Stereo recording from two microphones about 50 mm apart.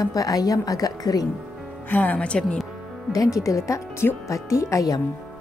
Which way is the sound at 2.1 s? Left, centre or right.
Left.